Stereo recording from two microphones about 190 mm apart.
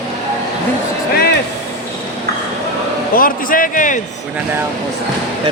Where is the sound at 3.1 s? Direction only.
45° left (ahead or behind).